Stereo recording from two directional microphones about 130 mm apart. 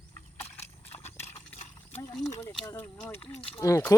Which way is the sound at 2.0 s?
25° left (ahead or behind).